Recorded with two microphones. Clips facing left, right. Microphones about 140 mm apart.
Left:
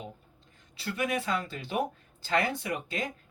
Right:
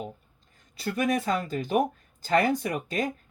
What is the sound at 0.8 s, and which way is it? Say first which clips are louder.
Speech: right 5 dB; 40° right (ahead or behind).